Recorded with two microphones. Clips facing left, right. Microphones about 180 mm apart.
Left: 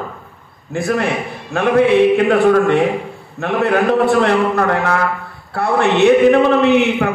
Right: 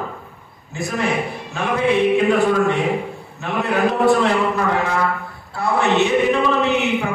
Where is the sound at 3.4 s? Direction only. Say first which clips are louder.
Left 6 dB; 65° left (ahead or behind).